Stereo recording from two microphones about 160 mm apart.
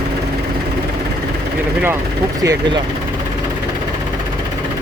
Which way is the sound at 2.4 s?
20° right (ahead or behind).